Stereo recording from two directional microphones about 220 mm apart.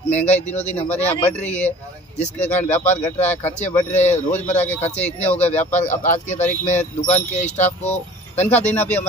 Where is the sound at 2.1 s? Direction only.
30° left (ahead or behind).